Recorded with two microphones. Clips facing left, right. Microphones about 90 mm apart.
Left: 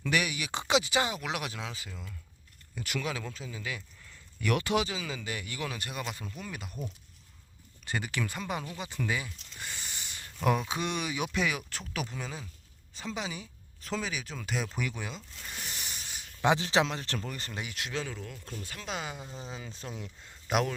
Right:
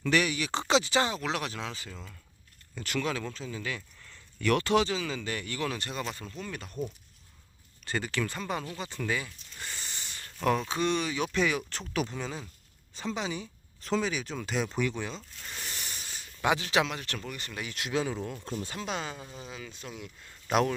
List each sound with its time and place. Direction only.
0.0 s speech: 10° left (ahead or behind)
7.9 s speech: 10° left (ahead or behind)
16.0 s a sound: 15° left (ahead or behind)
16.5 s speech: 30° left (ahead or behind)
17.7 s speech: 5° right (ahead or behind)
18.0 s speech: 25° right (ahead or behind)
18.9 s speech: 5° left (ahead or behind)
19.1 s speech: 25° left (ahead or behind)
20.5 s speech: 5° left (ahead or behind)